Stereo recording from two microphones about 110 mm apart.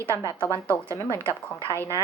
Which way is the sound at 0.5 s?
25° right (ahead or behind).